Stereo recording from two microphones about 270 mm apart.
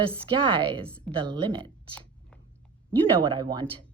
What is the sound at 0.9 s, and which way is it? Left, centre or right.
Speech, centre.